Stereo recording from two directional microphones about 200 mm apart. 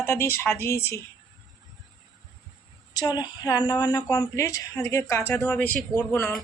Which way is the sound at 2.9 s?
20° left (ahead or behind).